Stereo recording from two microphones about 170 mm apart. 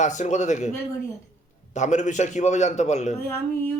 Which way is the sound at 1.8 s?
45° left (ahead or behind).